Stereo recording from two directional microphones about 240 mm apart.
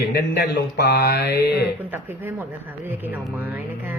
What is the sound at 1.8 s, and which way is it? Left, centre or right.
Speech, centre.